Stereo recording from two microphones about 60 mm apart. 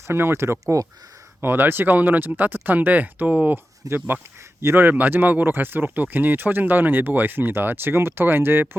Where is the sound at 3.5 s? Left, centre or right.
Right.